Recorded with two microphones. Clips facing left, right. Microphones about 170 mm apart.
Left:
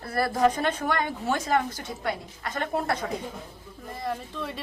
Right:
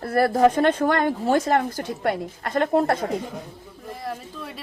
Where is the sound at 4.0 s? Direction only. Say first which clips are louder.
Left 2 dB; 5° right (ahead or behind).